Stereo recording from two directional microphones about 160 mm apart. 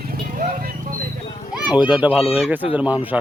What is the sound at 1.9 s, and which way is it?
Speech, 10° right (ahead or behind).